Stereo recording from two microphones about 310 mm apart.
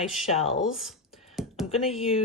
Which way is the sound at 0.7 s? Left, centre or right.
Centre.